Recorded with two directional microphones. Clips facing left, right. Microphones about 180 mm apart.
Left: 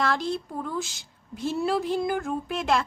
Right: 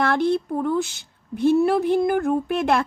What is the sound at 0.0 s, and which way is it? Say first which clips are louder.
A woman's voice: right 6 dB; 60° right (ahead or behind).